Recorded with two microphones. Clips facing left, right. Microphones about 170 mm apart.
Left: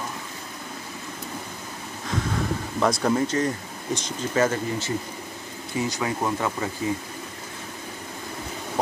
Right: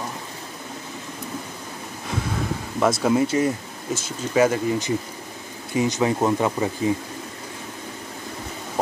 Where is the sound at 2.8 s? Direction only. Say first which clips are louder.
Right 3 dB; 5° right (ahead or behind).